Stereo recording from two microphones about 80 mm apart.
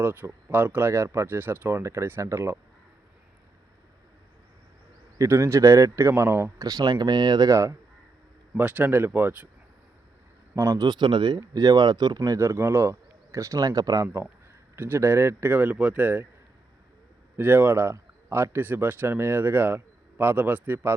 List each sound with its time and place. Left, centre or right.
0.0 s speech: right
1.4 s speech: right
1.8 s speech: right
5.1 s speech: right
6.6 s speech: right
6.9 s speech: right
7.5 s speech: right
8.5 s speech: right
10.5 s speech: right
10.8 s speech: right
11.3 s speech: right
12.4 s speech: right
14.8 s speech: right
17.3 s speech: right